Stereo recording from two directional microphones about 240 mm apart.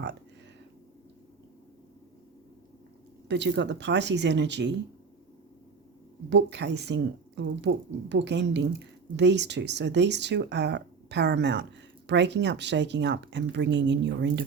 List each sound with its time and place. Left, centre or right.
3.2 s a woman's voice: right
6.3 s a woman's voice: right